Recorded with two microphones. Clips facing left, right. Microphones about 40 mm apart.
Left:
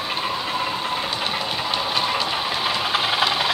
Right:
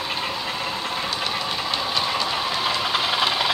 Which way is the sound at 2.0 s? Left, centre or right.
Centre.